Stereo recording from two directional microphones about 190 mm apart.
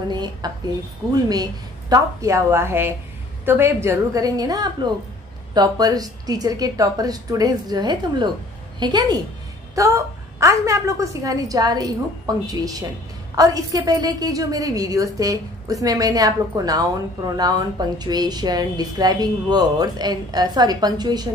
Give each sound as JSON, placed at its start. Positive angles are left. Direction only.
{"t": 0.1, "sound": "a woman's voice", "side_deg": -20}